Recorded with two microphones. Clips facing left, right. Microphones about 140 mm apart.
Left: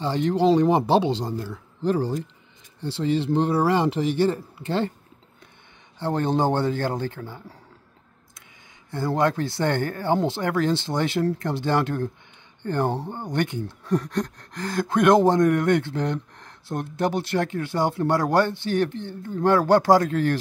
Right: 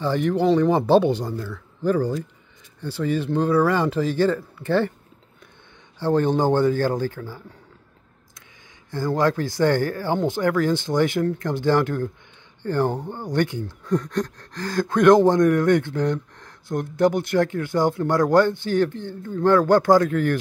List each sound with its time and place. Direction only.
0.0 s speech: 20° left (ahead or behind)
5.9 s speech: 20° left (ahead or behind)
8.9 s speech: 20° left (ahead or behind)